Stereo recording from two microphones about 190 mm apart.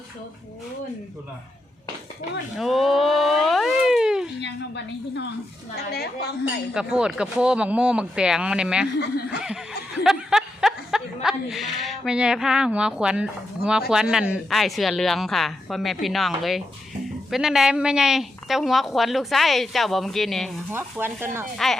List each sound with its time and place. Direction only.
2.6 s a sound: centre (ahead or behind)
4.4 s a woman's voice: 65° left (ahead or behind)
6.7 s a woman's voice: 5° right (ahead or behind)
21.0 s speech: 10° right (ahead or behind)